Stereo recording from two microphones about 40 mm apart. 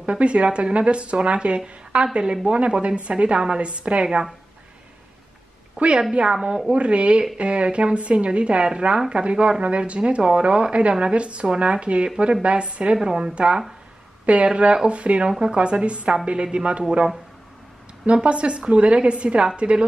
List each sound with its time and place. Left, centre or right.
0.0 s a woman's voice: right
5.8 s a woman's voice: right
18.0 s speech: right